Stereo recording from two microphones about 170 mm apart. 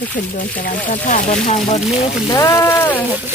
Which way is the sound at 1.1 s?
45° left (ahead or behind).